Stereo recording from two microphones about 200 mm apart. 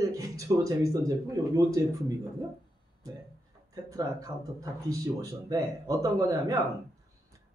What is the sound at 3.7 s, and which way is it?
A man's voice, 15° right (ahead or behind).